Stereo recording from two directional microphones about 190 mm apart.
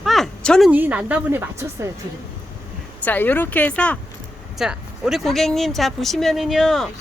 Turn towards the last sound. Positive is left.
turn(degrees=0)  # may be behind; listen again after turning